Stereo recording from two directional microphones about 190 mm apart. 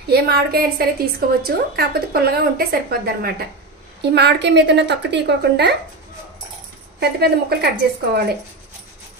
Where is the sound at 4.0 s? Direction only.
60° right (ahead or behind).